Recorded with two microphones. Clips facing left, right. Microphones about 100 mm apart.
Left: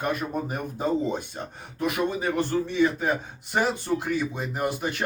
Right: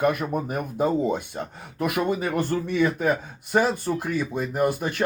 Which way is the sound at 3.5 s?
45° right (ahead or behind).